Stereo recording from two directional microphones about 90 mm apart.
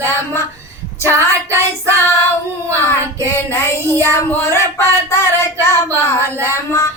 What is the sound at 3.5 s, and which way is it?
Speech, 30° left (ahead or behind).